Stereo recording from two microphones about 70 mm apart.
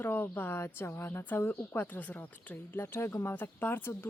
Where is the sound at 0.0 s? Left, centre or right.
Left.